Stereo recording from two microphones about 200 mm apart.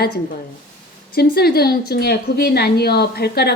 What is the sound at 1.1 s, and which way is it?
Speech, 50° left (ahead or behind).